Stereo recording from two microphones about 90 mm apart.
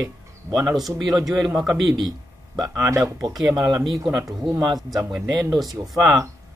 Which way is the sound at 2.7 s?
30° right (ahead or behind).